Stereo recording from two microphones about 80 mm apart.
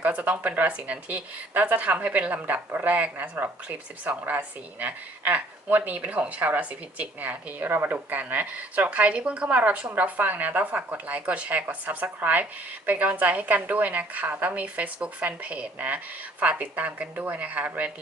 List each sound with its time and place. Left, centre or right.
0.0 s speech: centre